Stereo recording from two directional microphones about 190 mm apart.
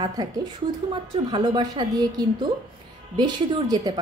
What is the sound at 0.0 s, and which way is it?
A woman's voice, 20° right (ahead or behind).